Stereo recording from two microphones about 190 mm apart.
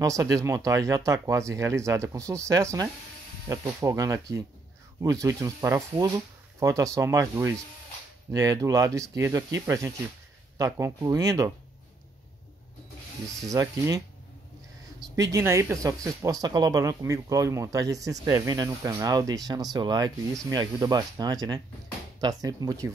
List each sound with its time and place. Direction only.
0.0 s speech: 15° right (ahead or behind)
13.4 s speech: 15° right (ahead or behind)
15.3 s speech: 15° right (ahead or behind)